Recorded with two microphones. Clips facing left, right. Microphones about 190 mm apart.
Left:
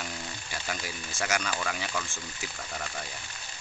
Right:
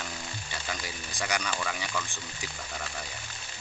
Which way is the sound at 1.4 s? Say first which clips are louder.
Left 1 dB; 5° left (ahead or behind).